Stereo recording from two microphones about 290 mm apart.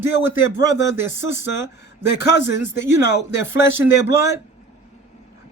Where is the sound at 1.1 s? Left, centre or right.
Left.